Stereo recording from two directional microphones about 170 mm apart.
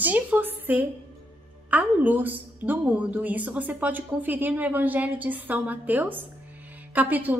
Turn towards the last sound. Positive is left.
turn(degrees=-10)  # may be behind; listen again after turning